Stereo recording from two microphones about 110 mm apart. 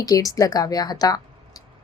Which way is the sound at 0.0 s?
30° left (ahead or behind).